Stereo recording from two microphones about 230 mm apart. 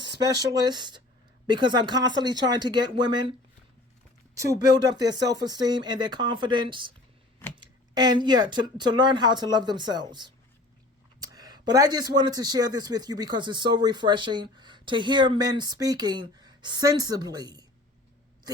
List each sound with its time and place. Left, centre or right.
0.2 s speech: centre
4.4 s speech: centre
11.2 s a sound: centre
12.2 s speech: centre